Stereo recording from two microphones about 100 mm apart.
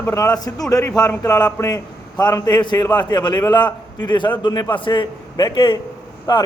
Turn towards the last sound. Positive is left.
turn(degrees=50)  # may be behind; listen again after turning